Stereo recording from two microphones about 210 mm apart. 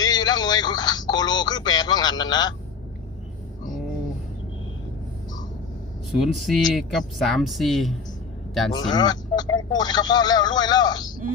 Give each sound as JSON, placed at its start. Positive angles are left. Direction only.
{"t": 0.0, "sound": "speech", "side_deg": 20}
{"t": 6.1, "sound": "speech", "side_deg": 0}
{"t": 8.7, "sound": "speech", "side_deg": 20}